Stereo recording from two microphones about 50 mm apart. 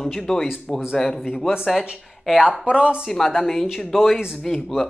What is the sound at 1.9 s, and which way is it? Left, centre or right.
Speech, centre.